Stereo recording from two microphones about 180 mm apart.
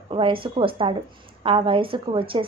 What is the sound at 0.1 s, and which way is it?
Speech, 30° right (ahead or behind).